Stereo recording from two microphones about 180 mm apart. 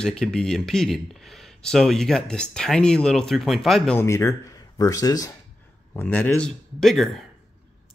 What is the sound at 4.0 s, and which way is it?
Speech, 15° left (ahead or behind).